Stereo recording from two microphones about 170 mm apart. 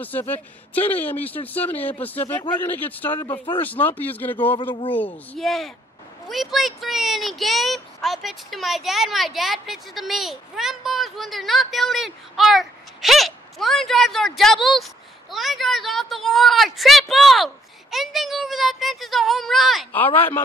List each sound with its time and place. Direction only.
0.3 s speech: 10° left (ahead or behind)
3.2 s speech: 30° left (ahead or behind)
3.6 s speech: 10° left (ahead or behind)